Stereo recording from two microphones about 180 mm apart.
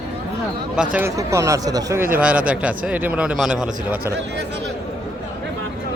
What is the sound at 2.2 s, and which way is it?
A man's voice, 5° right (ahead or behind).